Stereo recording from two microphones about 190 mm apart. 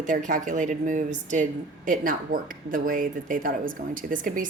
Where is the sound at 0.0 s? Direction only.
40° right (ahead or behind).